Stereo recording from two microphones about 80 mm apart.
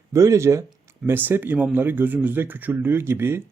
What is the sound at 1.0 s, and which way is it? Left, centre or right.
Speech, right.